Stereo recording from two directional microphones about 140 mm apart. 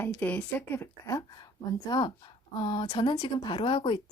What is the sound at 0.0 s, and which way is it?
A woman's voice, 15° left (ahead or behind).